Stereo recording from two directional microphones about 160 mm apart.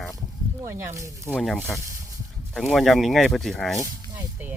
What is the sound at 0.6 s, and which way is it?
Speech, 15° right (ahead or behind).